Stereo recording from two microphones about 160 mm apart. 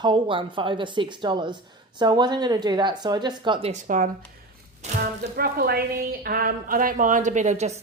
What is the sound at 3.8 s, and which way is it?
Speech, 60° right (ahead or behind).